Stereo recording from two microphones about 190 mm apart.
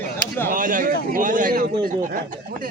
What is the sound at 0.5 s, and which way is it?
Speech, 45° right (ahead or behind).